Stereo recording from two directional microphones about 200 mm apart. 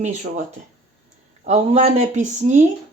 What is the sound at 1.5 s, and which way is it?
Speech, 30° right (ahead or behind).